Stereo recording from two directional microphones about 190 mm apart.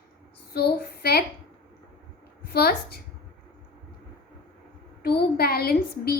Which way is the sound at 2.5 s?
55° left (ahead or behind).